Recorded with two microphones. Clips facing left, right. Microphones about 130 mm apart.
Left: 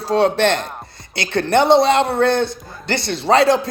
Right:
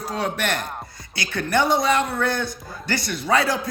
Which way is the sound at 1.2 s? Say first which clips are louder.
Left 7 dB; 65° left (ahead or behind).